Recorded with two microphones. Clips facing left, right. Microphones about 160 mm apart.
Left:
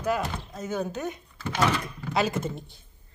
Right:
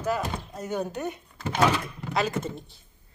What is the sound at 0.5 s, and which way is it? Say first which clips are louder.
Speech: even; 15° right (ahead or behind).